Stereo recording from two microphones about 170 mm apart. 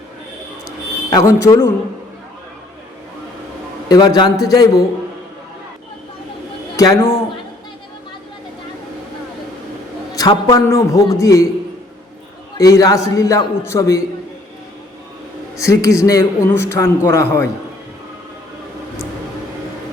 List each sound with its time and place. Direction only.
1.1 s a man's voice: 20° left (ahead or behind)
3.8 s a man's voice: 25° left (ahead or behind)
6.7 s a man's voice: 20° left (ahead or behind)
10.2 s a man's voice: 20° left (ahead or behind)
12.5 s a man's voice: 20° left (ahead or behind)
15.5 s a man's voice: 20° left (ahead or behind)